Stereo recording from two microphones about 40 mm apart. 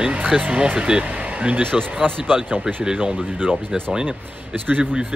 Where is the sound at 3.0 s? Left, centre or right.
Right.